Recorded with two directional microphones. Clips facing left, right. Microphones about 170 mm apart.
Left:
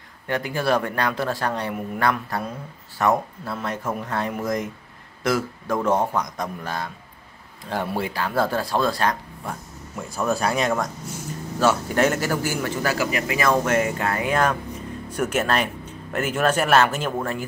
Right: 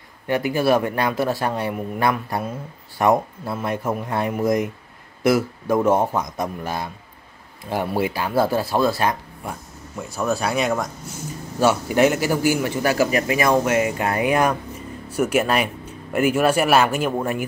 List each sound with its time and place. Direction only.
0.3 s speech: 10° right (ahead or behind)
12.9 s speech: 30° right (ahead or behind)
13.4 s speech: 15° right (ahead or behind)